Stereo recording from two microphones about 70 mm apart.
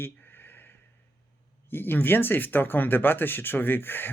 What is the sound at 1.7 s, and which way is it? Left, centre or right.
Speech, left.